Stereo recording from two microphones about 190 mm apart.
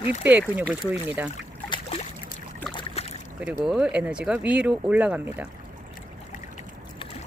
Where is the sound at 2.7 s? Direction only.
35° left (ahead or behind).